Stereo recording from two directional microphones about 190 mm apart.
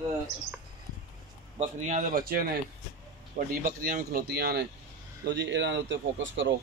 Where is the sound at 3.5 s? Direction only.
45° right (ahead or behind); by 6.5 s 75° right (ahead or behind).